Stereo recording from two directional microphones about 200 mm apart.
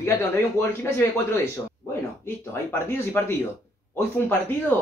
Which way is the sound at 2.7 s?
10° left (ahead or behind).